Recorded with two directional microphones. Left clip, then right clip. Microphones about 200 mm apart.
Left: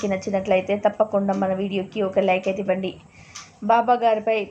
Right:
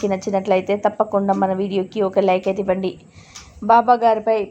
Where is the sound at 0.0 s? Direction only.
25° right (ahead or behind).